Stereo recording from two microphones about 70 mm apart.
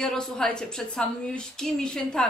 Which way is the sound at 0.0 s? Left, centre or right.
Centre.